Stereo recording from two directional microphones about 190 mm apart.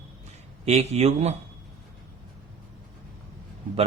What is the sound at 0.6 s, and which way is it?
Speech, 35° right (ahead or behind).